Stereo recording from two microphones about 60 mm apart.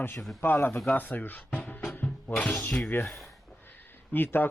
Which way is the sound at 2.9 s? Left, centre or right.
Left.